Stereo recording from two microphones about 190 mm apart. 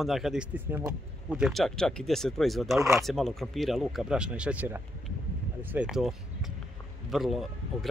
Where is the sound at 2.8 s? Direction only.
15° right (ahead or behind).